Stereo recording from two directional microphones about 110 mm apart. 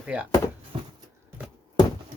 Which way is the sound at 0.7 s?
55° right (ahead or behind).